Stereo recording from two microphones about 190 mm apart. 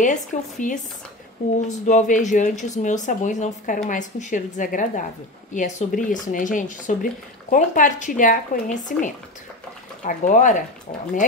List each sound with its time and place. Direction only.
0.0 s speech: 40° left (ahead or behind)